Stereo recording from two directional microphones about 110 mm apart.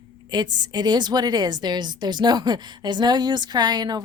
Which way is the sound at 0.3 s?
40° right (ahead or behind).